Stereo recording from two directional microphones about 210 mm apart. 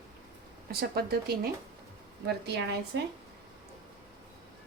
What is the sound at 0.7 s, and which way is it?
Speech, 45° right (ahead or behind).